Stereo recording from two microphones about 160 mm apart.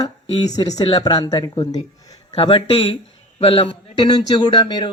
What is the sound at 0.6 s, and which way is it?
Speech, 25° left (ahead or behind).